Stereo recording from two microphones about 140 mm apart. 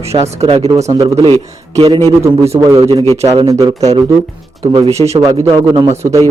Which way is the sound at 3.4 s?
25° right (ahead or behind).